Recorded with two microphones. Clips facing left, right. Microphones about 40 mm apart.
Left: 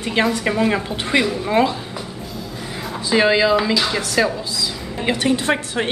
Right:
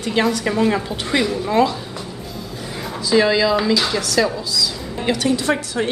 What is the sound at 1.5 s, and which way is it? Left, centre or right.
Speech, left.